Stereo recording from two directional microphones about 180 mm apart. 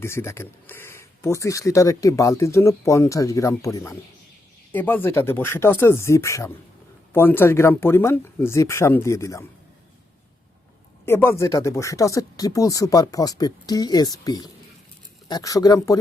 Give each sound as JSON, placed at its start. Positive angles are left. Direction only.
{"t": 0.0, "sound": "speech", "side_deg": 15}
{"t": 11.0, "sound": "speech", "side_deg": 15}